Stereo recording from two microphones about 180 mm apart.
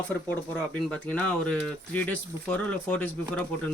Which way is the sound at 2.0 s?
10° left (ahead or behind).